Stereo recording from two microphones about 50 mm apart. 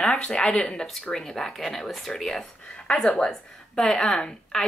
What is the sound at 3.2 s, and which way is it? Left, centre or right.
Speech, centre.